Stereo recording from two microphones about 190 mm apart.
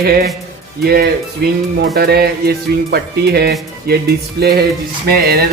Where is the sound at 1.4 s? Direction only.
60° right (ahead or behind).